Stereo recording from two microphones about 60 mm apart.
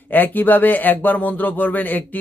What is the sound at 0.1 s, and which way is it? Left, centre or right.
A man's voice, left.